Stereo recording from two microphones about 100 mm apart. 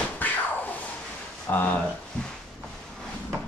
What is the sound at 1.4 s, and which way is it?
Speech, 15° left (ahead or behind).